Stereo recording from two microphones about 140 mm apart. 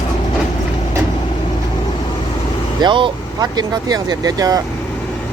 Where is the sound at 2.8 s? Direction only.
35° right (ahead or behind).